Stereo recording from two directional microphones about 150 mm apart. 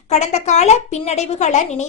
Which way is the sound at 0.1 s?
50° left (ahead or behind).